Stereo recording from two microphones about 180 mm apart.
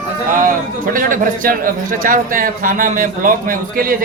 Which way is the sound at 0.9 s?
50° right (ahead or behind).